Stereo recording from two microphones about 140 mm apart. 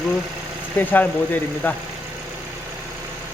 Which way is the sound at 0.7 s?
15° left (ahead or behind).